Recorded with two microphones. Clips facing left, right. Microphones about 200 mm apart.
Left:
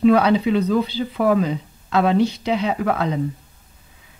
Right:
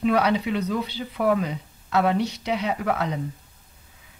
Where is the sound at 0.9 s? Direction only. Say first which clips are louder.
Left 4 dB; 90° left.